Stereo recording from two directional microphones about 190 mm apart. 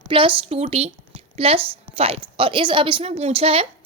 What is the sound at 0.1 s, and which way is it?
A woman's voice, 30° right (ahead or behind).